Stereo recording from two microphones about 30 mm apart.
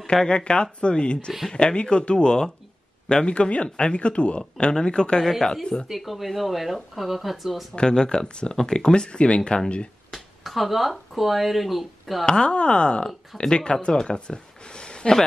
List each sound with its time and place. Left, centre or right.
0.3 s speech: left
3.3 s speech: left
5.9 s speech: centre
7.7 s speech: left
10.1 s speech: centre
12.3 s speech: left
14.0 s a sound: left